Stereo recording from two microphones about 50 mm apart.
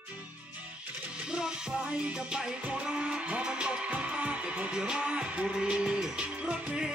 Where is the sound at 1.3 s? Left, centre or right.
Centre.